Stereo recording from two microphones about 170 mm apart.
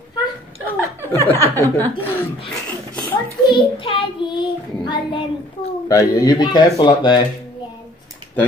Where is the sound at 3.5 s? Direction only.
30° left (ahead or behind).